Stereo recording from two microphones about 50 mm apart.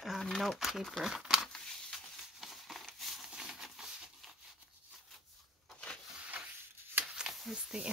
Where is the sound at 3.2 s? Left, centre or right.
Centre.